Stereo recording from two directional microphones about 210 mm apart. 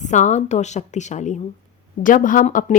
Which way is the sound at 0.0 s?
35° left (ahead or behind).